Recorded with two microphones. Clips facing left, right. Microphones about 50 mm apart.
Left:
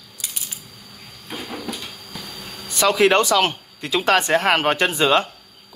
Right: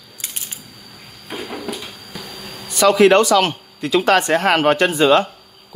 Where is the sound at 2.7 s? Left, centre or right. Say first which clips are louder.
Right 5 dB; right.